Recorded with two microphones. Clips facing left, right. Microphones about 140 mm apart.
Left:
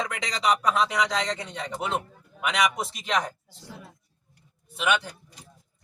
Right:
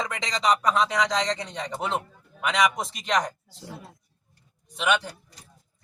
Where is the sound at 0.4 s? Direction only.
5° left (ahead or behind).